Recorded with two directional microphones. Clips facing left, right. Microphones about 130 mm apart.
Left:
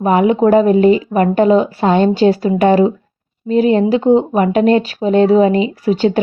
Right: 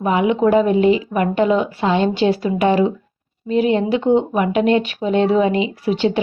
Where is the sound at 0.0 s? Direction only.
45° left (ahead or behind).